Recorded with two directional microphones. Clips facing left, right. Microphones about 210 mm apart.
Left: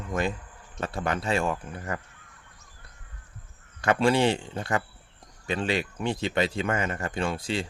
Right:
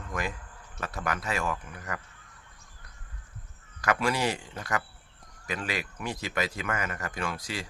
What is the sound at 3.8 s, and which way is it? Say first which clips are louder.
Speech: left 6 dB; 30° left (ahead or behind).